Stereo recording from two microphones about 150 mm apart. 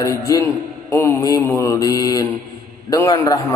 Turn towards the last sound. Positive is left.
turn(degrees=25)  # may be behind; listen again after turning